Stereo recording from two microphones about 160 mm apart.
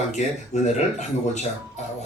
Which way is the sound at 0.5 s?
45° left (ahead or behind).